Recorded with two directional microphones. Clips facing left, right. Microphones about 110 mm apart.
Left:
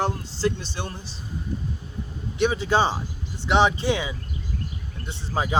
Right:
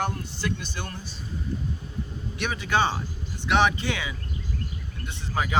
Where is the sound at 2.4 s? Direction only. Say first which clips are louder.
Left 4 dB; 20° left (ahead or behind).